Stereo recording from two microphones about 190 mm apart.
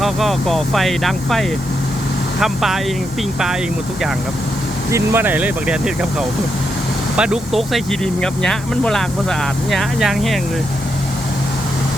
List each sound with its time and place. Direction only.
0.0 s speech: centre (ahead or behind)
4.9 s speech: 15° right (ahead or behind)